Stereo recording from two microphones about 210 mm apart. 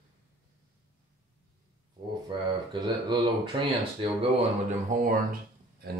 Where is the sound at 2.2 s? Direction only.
20° right (ahead or behind).